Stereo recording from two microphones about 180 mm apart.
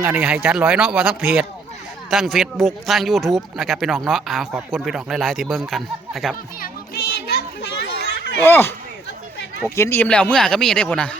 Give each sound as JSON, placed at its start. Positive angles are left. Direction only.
{"t": 0.0, "sound": "speech", "side_deg": -5}
{"t": 6.6, "sound": "children playing", "side_deg": 60}
{"t": 8.4, "sound": "speech", "side_deg": 10}
{"t": 9.7, "sound": "speech", "side_deg": 15}